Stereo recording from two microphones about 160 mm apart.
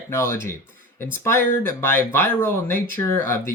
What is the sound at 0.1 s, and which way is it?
Speech, 15° left (ahead or behind).